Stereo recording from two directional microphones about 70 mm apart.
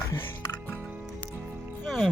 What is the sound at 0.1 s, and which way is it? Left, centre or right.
Music, left.